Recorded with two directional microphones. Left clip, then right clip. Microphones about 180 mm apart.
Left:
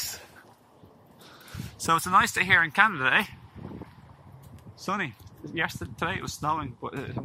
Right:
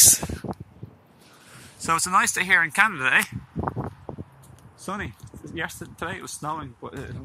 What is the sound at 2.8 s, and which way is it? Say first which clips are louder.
Speech: right 2 dB; 10° left (ahead or behind).